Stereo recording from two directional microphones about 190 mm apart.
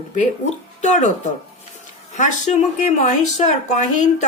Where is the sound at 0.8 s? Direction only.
40° left (ahead or behind).